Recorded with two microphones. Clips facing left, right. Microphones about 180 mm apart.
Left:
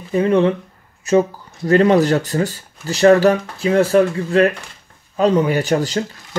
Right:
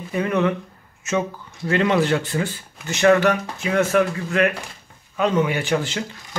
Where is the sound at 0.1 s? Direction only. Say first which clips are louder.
Left 6 dB; 30° left (ahead or behind).